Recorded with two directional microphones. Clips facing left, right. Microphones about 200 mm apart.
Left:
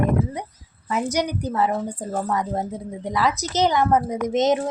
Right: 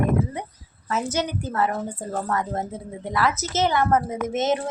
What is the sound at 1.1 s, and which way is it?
A woman's voice, 15° left (ahead or behind).